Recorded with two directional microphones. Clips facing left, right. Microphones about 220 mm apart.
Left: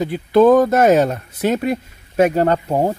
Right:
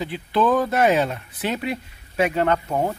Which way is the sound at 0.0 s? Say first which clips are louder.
Left 9 dB; 45° left (ahead or behind).